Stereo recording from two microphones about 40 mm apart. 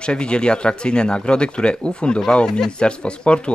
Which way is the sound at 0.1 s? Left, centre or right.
Left.